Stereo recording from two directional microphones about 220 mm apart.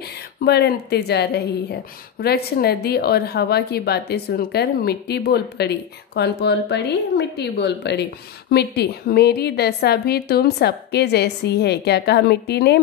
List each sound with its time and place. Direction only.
0.4 s a woman's voice: 45° left (ahead or behind)